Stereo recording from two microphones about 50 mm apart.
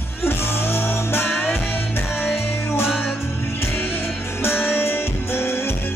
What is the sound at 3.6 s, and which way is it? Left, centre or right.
Music, left.